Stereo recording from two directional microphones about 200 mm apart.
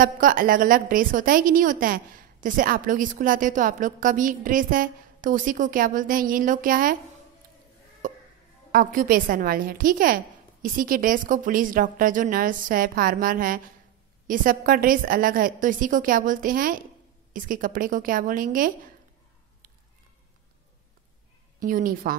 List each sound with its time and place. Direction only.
0.0 s a woman's voice: 45° right (ahead or behind)
8.7 s a woman's voice: 45° right (ahead or behind)
21.5 s a woman's voice: 40° right (ahead or behind)